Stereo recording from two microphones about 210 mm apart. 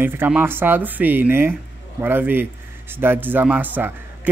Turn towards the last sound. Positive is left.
turn(degrees=-10)  # may be behind; listen again after turning